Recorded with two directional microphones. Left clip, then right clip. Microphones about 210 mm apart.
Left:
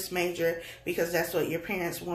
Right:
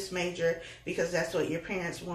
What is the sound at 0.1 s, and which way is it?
Speech, 50° left (ahead or behind).